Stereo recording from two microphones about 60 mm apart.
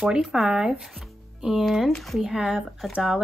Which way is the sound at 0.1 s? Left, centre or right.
Centre.